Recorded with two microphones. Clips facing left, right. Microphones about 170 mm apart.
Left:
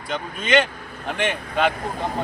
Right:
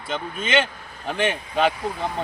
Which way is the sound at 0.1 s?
5° right (ahead or behind).